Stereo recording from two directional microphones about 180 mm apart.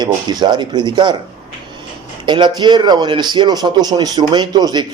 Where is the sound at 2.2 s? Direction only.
25° right (ahead or behind).